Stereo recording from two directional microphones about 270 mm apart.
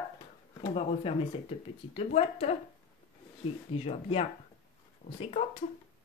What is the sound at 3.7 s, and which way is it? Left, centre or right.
Speech, left.